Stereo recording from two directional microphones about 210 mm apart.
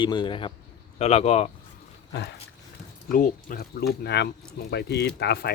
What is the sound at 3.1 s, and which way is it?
Speech, 40° left (ahead or behind).